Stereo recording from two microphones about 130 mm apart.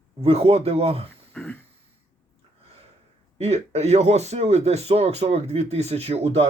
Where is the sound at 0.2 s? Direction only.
50° right (ahead or behind).